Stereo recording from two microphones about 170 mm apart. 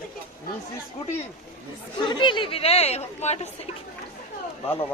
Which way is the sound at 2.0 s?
25° left (ahead or behind).